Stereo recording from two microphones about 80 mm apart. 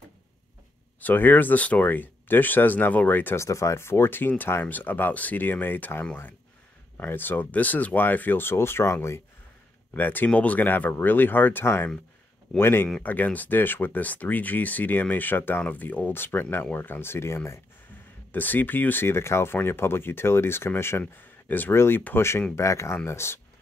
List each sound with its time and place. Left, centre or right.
1.0 s speech: left
3.3 s speech: left
9.9 s speech: left